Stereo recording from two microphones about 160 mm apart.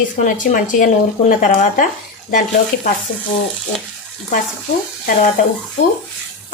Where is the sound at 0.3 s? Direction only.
55° left (ahead or behind).